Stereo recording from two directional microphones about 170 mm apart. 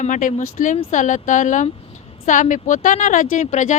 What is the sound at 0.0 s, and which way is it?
Speech, 50° left (ahead or behind).